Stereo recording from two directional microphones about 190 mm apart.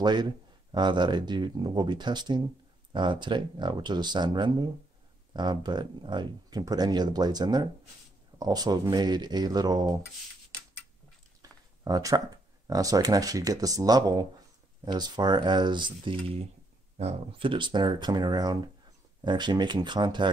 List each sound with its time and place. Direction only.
0.0 s speech: 20° right (ahead or behind)
11.4 s a sound: 20° right (ahead or behind)
11.8 s speech: 20° right (ahead or behind)